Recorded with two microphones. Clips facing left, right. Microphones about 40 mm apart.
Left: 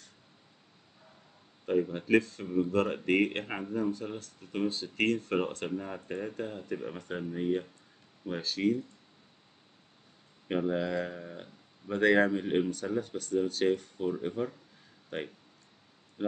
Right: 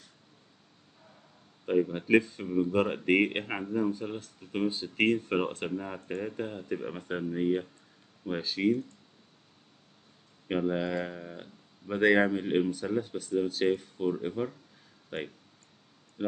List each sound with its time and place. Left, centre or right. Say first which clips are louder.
1.7 s speech: right 2 dB; centre
10.7 s speech: even; centre